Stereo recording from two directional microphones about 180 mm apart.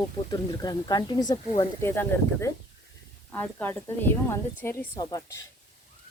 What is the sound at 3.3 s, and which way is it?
Speech, 10° left (ahead or behind).